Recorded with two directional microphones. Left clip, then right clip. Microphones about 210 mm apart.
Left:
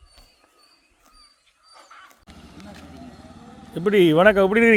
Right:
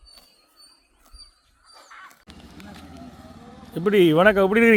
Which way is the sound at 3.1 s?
10° right (ahead or behind).